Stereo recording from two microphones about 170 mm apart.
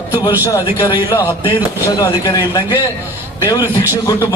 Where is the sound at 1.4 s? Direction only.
30° left (ahead or behind).